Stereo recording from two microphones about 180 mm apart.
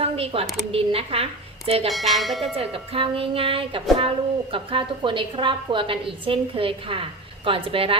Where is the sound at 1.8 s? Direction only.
Centre (ahead or behind).